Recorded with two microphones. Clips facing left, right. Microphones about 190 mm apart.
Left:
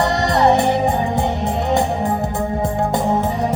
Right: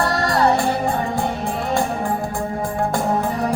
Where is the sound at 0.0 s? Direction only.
20° left (ahead or behind).